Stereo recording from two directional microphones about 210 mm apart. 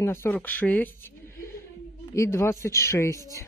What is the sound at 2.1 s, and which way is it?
Speech, 15° left (ahead or behind).